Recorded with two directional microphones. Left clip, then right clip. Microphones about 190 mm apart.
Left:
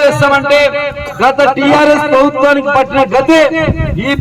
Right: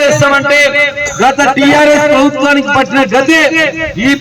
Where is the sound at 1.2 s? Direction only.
40° right (ahead or behind).